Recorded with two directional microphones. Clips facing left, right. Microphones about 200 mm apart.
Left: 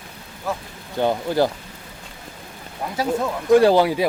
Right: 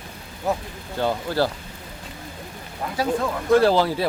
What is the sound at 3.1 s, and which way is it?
Speech, 15° left (ahead or behind).